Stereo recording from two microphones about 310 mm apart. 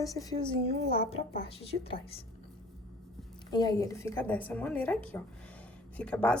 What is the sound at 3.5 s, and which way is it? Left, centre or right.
A woman's voice, centre.